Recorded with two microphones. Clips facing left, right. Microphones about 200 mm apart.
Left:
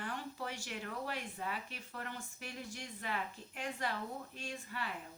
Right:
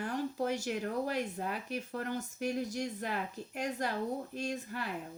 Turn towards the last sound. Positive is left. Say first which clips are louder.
# right 6 dB
turn(degrees=-45)  # may be behind; listen again after turning